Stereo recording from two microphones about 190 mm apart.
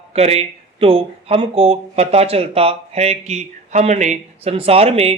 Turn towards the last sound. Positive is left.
turn(degrees=-30)  # may be behind; listen again after turning